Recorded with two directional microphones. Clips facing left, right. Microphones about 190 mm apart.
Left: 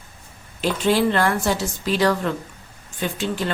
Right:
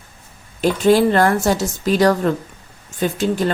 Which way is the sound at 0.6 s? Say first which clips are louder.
Right 5 dB; 45° right (ahead or behind).